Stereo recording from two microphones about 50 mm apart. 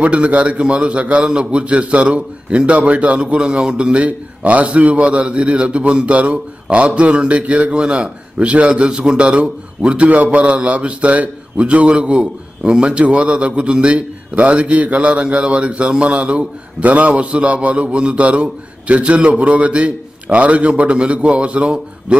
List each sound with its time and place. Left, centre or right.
0.0 s a man's voice: right